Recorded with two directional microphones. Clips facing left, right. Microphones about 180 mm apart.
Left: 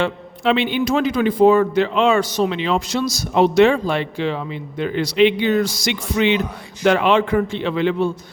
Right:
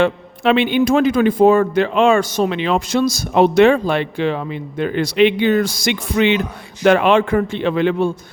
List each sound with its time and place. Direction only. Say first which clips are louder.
0.0 s a man's voice: right 4 dB; 55° right (ahead or behind)